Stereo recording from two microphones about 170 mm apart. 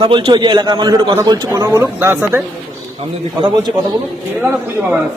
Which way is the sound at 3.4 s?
25° right (ahead or behind).